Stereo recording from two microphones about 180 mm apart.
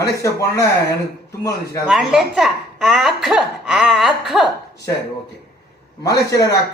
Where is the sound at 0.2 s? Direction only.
15° left (ahead or behind).